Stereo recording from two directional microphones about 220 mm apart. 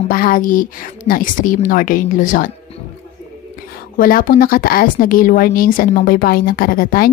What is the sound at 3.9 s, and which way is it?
A woman's voice, 40° left (ahead or behind).